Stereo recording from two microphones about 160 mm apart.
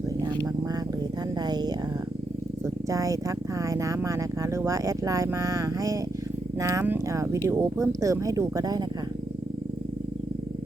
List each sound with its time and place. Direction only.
1.4 s speech: 25° right (ahead or behind)